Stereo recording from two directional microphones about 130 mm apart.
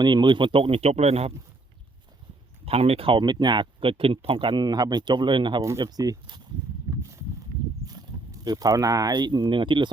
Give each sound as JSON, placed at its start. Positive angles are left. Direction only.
{"t": 0.0, "sound": "speech", "side_deg": -35}
{"t": 2.6, "sound": "speech", "side_deg": -50}
{"t": 7.9, "sound": "speech", "side_deg": -30}